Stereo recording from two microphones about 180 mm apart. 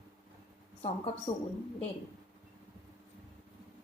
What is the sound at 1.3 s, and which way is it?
Speech, 40° left (ahead or behind).